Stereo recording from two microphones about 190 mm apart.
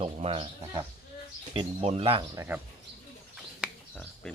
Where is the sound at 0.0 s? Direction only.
30° right (ahead or behind).